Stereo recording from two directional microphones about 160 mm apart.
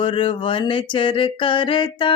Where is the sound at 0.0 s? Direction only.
30° left (ahead or behind).